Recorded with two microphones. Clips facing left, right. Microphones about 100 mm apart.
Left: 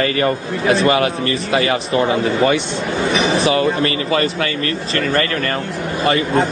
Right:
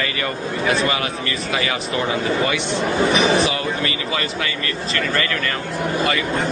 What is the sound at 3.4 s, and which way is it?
A man's voice, 40° left (ahead or behind).